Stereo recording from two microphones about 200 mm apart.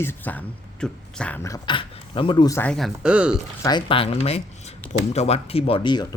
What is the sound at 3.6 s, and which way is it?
Speech, 25° left (ahead or behind).